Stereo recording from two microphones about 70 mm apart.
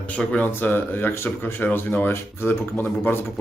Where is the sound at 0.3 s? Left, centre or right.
Left.